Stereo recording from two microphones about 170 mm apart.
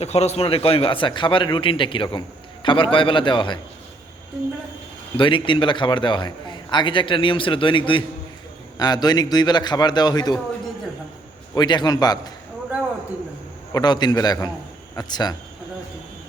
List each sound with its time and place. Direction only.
0.0 s a man's voice: 40° left (ahead or behind)
5.1 s a man's voice: 30° left (ahead or behind)
11.5 s a man's voice: 25° left (ahead or behind)
12.7 s a sound: 5° right (ahead or behind)
13.7 s a man's voice: 25° left (ahead or behind)